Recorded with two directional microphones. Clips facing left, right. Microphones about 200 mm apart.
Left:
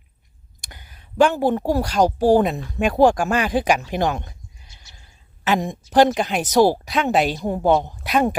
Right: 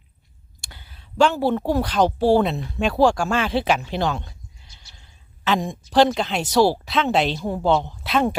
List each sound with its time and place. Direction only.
0.6 s a sound: 15° left (ahead or behind)
1.4 s speech: 15° left (ahead or behind)
5.5 s a woman's voice: 20° left (ahead or behind)